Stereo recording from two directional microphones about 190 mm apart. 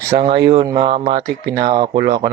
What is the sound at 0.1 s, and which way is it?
Speech, 35° right (ahead or behind).